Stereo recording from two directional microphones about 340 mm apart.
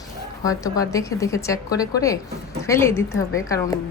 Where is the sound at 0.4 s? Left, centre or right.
Centre.